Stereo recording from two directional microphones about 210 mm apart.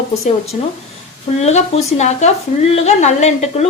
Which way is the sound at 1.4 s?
30° left (ahead or behind).